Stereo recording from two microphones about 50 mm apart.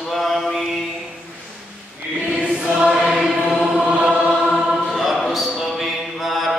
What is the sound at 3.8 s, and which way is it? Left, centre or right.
Choir, right.